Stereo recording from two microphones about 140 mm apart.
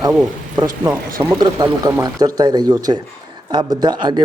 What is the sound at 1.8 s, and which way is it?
Speech, 25° right (ahead or behind).